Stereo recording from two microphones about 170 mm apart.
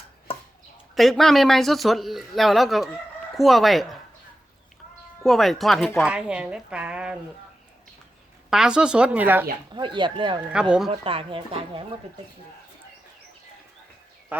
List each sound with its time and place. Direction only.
0.9 s speech: centre (ahead or behind)
5.2 s speech: centre (ahead or behind)
8.4 s speech: 5° right (ahead or behind)
9.7 s speech: 25° right (ahead or behind)
10.5 s speech: 5° right (ahead or behind)
11.0 s speech: 30° right (ahead or behind)